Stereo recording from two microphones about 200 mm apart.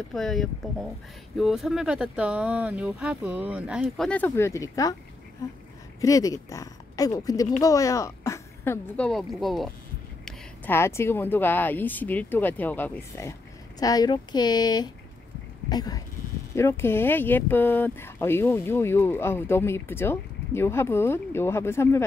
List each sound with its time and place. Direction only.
0.1 s speech: centre (ahead or behind)
5.9 s a woman's voice: 15° left (ahead or behind)